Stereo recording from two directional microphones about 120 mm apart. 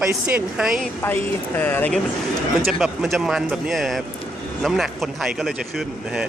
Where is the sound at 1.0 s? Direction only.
15° left (ahead or behind).